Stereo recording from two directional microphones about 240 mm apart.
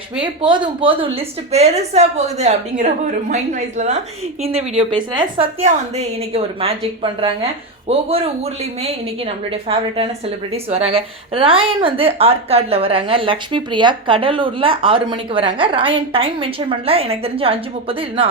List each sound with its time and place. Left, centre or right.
0.4 s a woman's voice: centre